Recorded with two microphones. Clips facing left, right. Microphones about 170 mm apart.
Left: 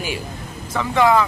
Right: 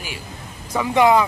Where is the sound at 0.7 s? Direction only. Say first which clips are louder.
Right 1 dB; 15° right (ahead or behind).